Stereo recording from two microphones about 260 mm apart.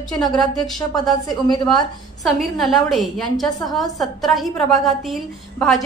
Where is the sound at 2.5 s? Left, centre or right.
Centre.